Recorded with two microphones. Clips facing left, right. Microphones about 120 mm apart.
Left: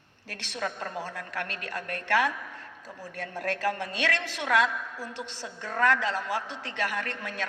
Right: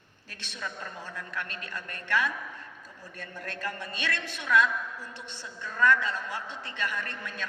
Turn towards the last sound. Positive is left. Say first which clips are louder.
# left 3 dB
turn(degrees=90)